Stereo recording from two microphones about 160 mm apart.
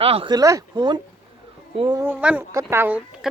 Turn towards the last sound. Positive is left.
turn(degrees=-10)  # may be behind; listen again after turning